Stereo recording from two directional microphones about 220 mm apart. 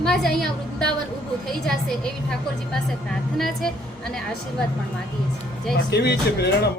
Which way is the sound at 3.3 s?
Centre (ahead or behind).